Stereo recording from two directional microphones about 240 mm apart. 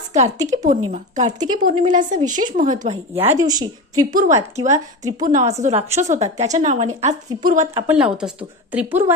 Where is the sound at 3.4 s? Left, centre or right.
Centre.